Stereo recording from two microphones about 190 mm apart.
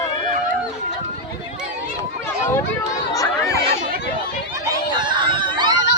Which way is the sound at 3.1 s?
15° left (ahead or behind).